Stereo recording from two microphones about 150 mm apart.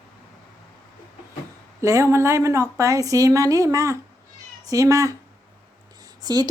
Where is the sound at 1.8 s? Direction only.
20° right (ahead or behind).